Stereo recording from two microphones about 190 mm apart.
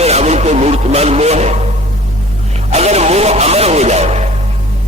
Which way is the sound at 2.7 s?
35° right (ahead or behind).